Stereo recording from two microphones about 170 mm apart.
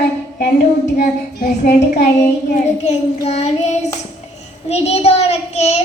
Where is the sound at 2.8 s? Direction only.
40° left (ahead or behind).